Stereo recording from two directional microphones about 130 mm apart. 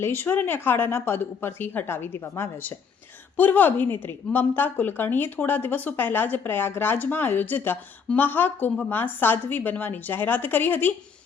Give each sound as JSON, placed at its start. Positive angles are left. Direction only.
{"t": 0.0, "sound": "a woman's voice", "side_deg": 15}